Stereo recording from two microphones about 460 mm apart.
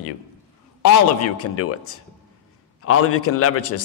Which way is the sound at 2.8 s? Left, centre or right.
Left.